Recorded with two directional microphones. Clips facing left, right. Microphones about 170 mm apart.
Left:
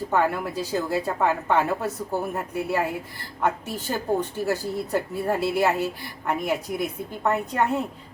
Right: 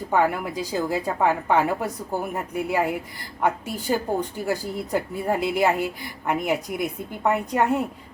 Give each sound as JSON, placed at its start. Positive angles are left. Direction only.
{"t": 0.1, "sound": "a woman's voice", "side_deg": -15}